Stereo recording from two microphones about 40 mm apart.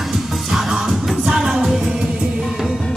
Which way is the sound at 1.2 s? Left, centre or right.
Centre.